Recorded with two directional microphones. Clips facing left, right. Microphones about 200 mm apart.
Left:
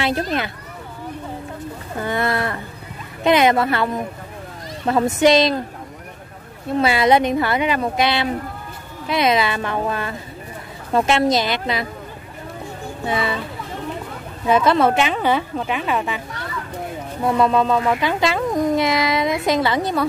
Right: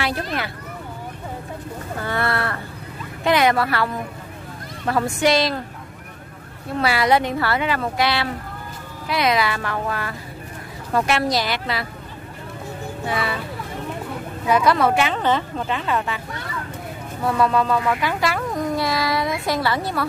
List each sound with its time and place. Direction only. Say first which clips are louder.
0.0 s speech: left 4 dB; 25° left (ahead or behind)
2.0 s a woman's voice: left 3 dB; 15° left (ahead or behind)
6.8 s speech: left 3 dB; 20° left (ahead or behind)
13.0 s speech: left 3 dB; 20° left (ahead or behind)
14.5 s speech: left 2 dB; 25° left (ahead or behind)
15.1 s a woman's voice: left 2 dB; 10° left (ahead or behind)
17.2 s speech: left 2 dB; 20° left (ahead or behind)